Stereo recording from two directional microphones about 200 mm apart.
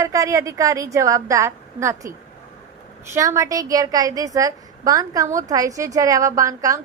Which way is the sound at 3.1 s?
15° right (ahead or behind).